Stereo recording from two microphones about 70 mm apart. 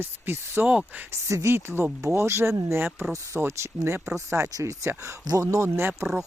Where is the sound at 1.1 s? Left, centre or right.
Right.